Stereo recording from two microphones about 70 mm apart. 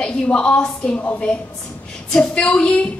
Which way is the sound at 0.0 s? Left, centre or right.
Centre.